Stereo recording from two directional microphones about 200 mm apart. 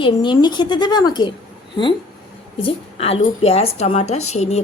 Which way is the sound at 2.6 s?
30° left (ahead or behind).